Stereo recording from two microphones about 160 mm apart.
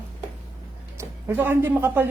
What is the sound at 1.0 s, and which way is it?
Speech, 10° right (ahead or behind).